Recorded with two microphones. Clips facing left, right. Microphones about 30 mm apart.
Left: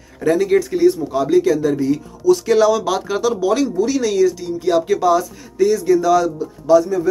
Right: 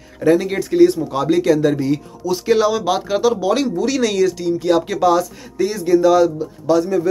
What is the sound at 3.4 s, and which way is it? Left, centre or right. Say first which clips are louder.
Speech: left 1 dB; right.